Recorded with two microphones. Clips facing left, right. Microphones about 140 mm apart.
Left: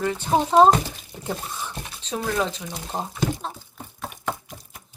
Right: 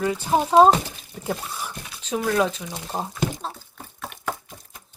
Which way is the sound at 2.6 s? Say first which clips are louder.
Right 1 dB; 5° right (ahead or behind).